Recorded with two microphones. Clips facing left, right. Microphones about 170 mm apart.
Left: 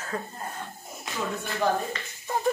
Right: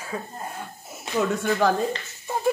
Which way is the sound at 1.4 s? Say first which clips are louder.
Right 2 dB; 90° right.